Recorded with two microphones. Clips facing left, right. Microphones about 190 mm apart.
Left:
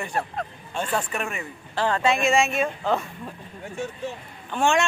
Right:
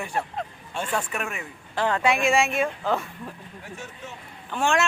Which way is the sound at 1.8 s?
15° right (ahead or behind).